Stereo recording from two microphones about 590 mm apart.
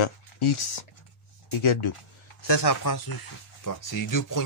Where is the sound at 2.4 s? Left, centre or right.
Left.